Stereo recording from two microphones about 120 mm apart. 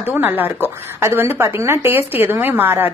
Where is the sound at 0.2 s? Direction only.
15° right (ahead or behind).